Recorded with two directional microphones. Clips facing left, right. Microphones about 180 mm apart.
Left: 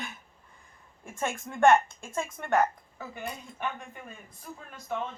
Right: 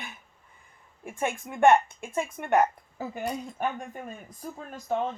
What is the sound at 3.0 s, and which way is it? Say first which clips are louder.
Speech: right 7 dB; 40° right (ahead or behind).